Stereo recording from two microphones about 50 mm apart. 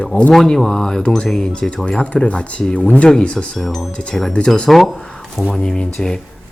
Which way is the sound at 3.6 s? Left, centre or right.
Centre.